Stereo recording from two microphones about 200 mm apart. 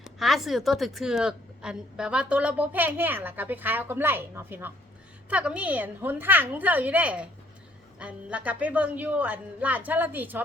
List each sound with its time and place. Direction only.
0.0 s a woman's voice: centre (ahead or behind)